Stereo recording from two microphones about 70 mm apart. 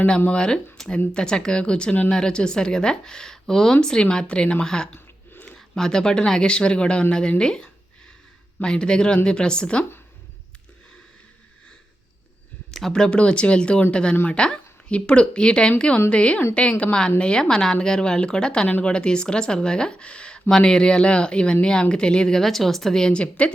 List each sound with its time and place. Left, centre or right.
0.3 s speech: centre
12.7 s speech: centre